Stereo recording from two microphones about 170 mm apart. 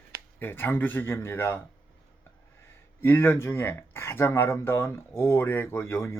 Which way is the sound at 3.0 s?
15° left (ahead or behind).